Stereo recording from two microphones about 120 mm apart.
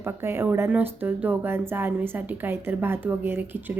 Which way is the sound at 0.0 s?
20° right (ahead or behind).